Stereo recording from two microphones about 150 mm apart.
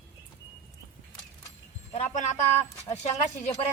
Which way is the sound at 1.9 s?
50° left (ahead or behind).